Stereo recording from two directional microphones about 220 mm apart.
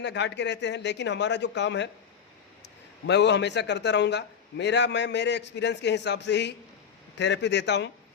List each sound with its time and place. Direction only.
0.0 s a man's voice: 50° left (ahead or behind)
3.1 s a man's voice: 50° left (ahead or behind)